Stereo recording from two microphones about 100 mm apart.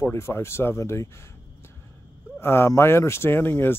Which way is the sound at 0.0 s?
25° left (ahead or behind).